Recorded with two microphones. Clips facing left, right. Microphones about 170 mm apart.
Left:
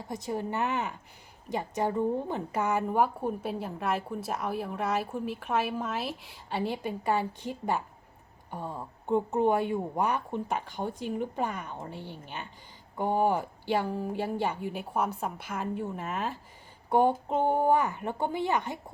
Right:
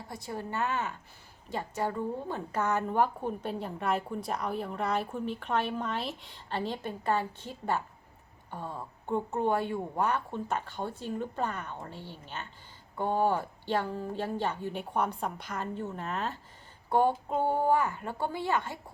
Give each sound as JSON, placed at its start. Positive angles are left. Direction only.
{"t": 0.1, "sound": "a woman's voice", "side_deg": 20}